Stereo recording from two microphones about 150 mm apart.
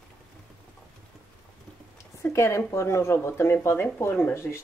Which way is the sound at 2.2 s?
20° left (ahead or behind).